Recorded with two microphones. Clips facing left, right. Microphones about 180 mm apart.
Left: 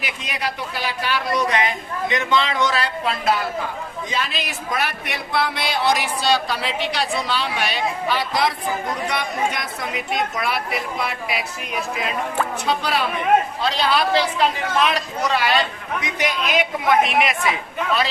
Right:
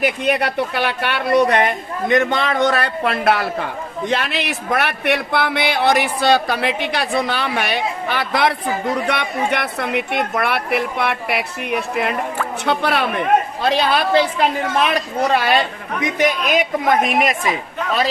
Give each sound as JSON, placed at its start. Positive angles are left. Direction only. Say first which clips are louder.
{"t": 0.0, "sound": "a man's voice", "louder": "right 10 dB", "side_deg": -60}
{"t": 15.2, "sound": "a man's voice", "louder": "right 4 dB", "side_deg": -50}